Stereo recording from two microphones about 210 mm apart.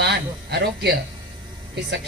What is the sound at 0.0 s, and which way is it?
Speech, 50° right (ahead or behind).